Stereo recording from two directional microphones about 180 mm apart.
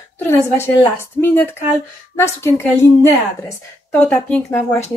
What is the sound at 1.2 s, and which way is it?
Speech, 10° left (ahead or behind).